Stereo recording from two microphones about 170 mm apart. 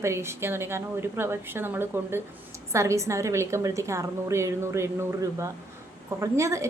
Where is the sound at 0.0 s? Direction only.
15° right (ahead or behind).